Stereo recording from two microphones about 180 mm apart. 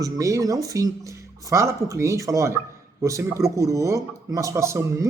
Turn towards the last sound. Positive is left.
turn(degrees=-15)  # may be behind; listen again after turning